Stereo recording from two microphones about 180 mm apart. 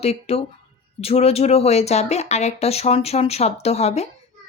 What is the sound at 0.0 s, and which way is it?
A woman's voice, 35° left (ahead or behind).